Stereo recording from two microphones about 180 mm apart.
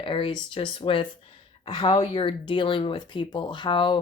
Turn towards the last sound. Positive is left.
turn(degrees=25)  # may be behind; listen again after turning